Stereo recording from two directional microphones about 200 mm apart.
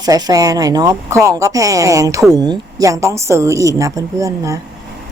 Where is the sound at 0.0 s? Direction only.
20° right (ahead or behind).